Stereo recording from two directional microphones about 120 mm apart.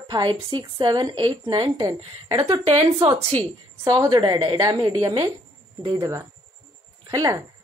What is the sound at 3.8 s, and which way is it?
Speech, 30° right (ahead or behind).